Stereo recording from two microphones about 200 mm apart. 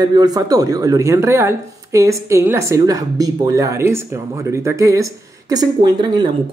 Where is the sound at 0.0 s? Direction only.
20° right (ahead or behind).